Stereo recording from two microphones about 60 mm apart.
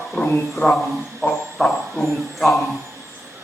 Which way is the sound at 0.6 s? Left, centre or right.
Left.